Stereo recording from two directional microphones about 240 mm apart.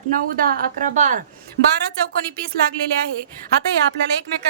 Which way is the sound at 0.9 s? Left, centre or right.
Right.